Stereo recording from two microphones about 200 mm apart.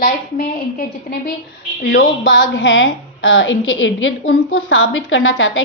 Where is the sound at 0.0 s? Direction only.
45° left (ahead or behind).